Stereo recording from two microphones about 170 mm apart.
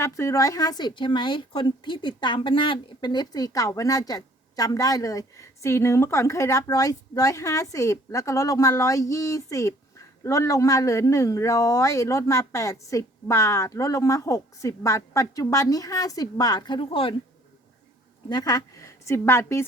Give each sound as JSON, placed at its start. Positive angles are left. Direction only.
{"t": 0.0, "sound": "speech", "side_deg": 15}
{"t": 18.3, "sound": "a woman's voice", "side_deg": 25}